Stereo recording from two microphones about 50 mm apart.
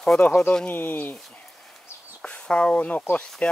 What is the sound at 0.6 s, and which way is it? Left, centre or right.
Speech, left.